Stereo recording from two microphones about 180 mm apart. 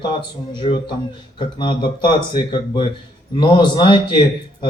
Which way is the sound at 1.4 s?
25° left (ahead or behind).